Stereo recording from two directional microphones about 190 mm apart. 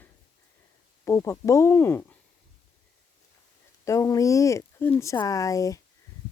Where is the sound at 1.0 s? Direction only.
15° left (ahead or behind).